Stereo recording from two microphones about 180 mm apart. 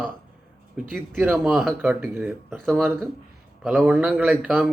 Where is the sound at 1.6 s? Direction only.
10° right (ahead or behind).